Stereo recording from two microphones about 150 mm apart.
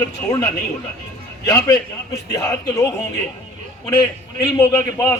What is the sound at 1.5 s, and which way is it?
A man's voice, 25° left (ahead or behind).